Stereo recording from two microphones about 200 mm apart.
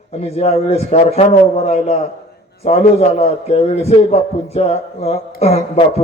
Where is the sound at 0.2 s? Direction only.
30° left (ahead or behind).